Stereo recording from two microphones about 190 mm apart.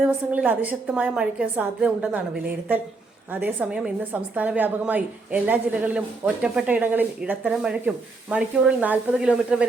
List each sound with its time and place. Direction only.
0.0 s a woman's voice: 10° right (ahead or behind)